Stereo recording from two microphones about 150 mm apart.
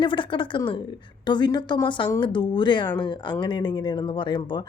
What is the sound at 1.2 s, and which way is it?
Speech, 30° left (ahead or behind).